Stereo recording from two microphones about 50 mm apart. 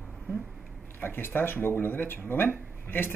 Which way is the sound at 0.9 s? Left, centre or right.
Left.